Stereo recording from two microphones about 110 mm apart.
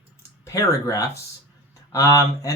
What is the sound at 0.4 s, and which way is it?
A man's voice, 30° left (ahead or behind).